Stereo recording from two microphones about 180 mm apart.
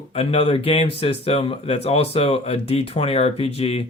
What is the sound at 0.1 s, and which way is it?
Speech, 35° left (ahead or behind).